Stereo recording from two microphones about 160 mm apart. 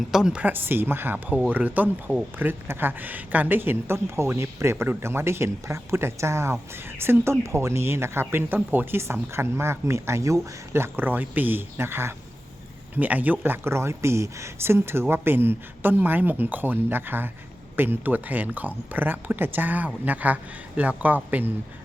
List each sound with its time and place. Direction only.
0.1 s speech: 5° right (ahead or behind)